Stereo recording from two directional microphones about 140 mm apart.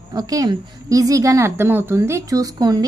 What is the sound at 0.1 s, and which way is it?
A woman's voice, 25° right (ahead or behind).